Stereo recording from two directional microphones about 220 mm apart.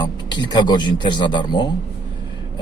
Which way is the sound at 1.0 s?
20° left (ahead or behind).